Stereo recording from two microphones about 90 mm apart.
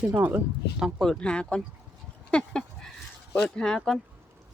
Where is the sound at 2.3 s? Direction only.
10° left (ahead or behind).